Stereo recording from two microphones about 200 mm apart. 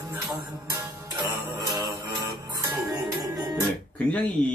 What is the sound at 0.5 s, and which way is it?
Music, 15° right (ahead or behind).